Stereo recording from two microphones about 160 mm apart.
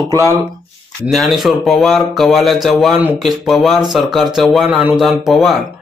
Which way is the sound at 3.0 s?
10° right (ahead or behind).